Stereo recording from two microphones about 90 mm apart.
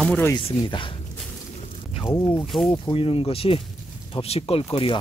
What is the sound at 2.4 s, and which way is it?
Speech, centre (ahead or behind).